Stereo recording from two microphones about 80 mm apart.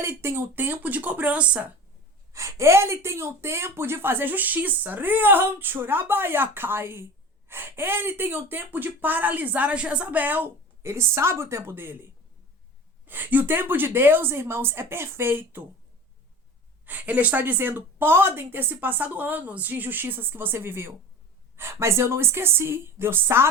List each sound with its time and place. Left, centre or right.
0.0 s speech: right; by 1.7 s centre
2.3 s a woman's voice: right
13.1 s speech: right
16.8 s a woman's voice: right